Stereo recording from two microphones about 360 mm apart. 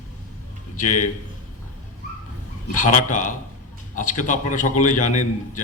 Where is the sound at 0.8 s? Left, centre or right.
Left.